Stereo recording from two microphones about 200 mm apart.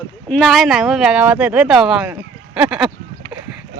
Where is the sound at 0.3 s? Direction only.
5° left (ahead or behind).